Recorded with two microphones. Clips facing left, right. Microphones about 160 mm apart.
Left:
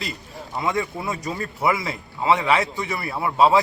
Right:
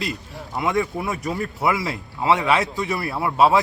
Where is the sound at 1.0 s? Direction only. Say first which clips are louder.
Right 2 dB; 20° left (ahead or behind).